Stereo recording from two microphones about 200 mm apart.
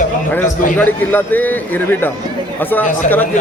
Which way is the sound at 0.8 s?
10° left (ahead or behind).